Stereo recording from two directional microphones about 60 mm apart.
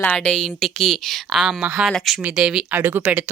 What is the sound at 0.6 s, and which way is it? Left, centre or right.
Speech, centre.